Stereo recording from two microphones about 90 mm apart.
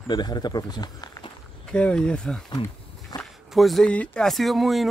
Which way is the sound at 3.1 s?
45° left (ahead or behind).